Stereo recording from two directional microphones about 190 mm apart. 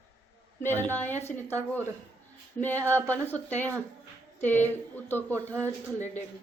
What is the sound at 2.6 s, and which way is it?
A man's voice, 10° left (ahead or behind).